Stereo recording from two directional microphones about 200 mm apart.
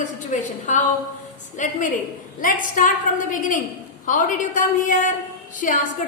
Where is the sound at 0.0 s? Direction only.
40° left (ahead or behind).